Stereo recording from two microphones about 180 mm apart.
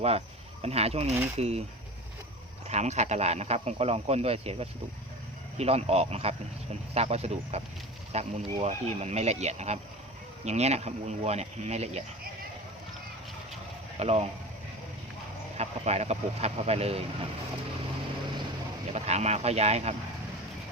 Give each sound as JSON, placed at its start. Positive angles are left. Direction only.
{"t": 0.6, "sound": "speech", "side_deg": -35}
{"t": 2.6, "sound": "speech", "side_deg": -40}
{"t": 14.0, "sound": "speech", "side_deg": -35}
{"t": 15.5, "sound": "speech", "side_deg": -35}
{"t": 18.9, "sound": "speech", "side_deg": -35}